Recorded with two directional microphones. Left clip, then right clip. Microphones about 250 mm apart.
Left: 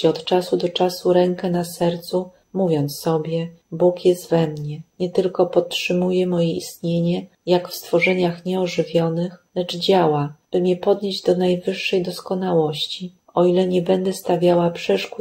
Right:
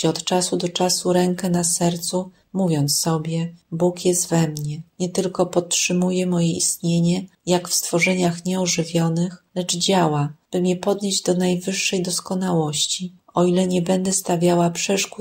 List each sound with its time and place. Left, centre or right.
0.0 s speech: right